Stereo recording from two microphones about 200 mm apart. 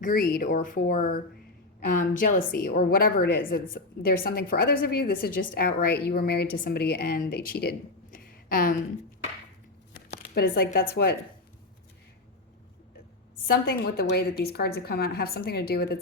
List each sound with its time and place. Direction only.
0.0 s a woman's voice: 45° left (ahead or behind)
10.3 s a woman's voice: 50° left (ahead or behind)
13.5 s a woman's voice: 50° left (ahead or behind)